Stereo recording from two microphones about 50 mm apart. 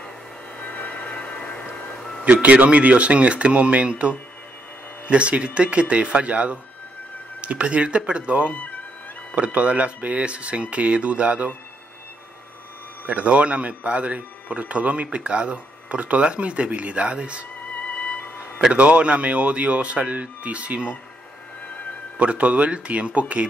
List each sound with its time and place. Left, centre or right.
0.6 s music: left
2.2 s speech: right
5.1 s speech: right
8.5 s music: left
9.3 s speech: right
13.0 s speech: right
17.8 s music: left
18.7 s speech: right
22.2 s speech: right